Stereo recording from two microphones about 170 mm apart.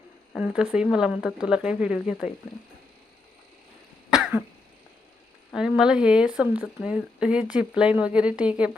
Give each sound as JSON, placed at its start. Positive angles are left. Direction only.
{"t": 0.3, "sound": "speech", "side_deg": -5}
{"t": 4.1, "sound": "cough", "side_deg": -5}
{"t": 5.5, "sound": "speech", "side_deg": -5}